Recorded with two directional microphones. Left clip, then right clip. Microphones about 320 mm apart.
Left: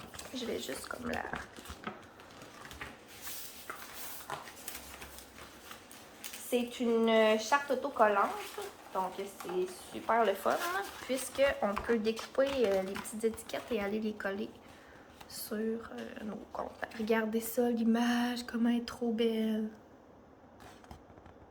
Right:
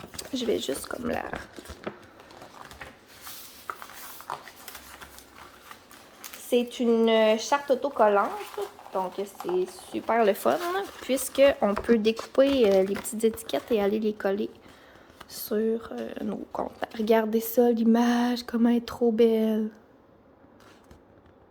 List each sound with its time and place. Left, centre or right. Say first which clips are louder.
0.1 s speech: right 11 dB; right
6.5 s speech: right 8 dB; right
9.9 s speech: right 6 dB; right